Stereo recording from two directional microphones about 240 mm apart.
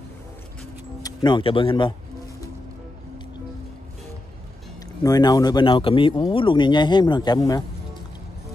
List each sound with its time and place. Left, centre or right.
1.0 s speech: centre
5.0 s speech: centre